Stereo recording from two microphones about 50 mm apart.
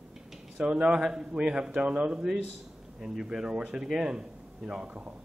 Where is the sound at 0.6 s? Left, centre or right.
Centre.